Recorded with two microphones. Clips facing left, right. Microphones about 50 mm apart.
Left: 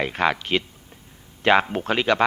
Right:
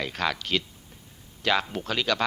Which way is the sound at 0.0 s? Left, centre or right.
Left.